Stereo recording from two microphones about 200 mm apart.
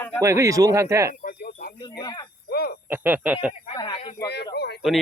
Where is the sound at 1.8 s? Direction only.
20° left (ahead or behind).